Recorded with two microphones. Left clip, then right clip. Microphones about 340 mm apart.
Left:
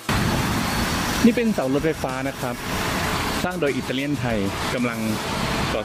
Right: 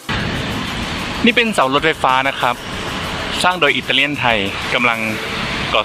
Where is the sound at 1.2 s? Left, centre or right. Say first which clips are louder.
Right 7 dB; right.